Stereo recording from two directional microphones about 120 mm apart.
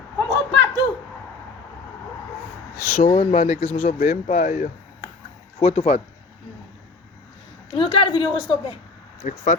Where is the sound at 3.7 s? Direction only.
90° left.